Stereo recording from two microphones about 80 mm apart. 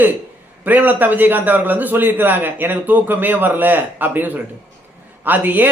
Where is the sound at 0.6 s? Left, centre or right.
Right.